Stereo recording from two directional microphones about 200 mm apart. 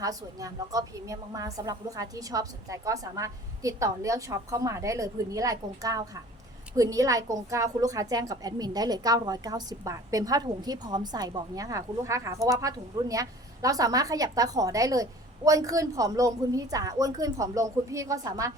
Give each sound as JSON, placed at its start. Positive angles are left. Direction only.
{"t": 0.0, "sound": "a woman's voice", "side_deg": -15}